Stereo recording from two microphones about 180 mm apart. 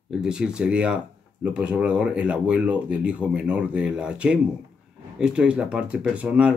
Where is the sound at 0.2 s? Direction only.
5° right (ahead or behind).